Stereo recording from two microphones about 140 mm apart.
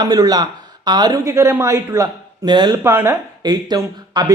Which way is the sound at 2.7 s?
15° right (ahead or behind).